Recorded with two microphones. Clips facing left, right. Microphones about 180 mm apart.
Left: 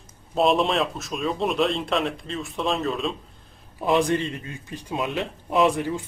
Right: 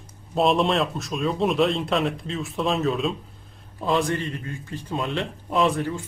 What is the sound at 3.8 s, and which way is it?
A man's voice, 20° left (ahead or behind).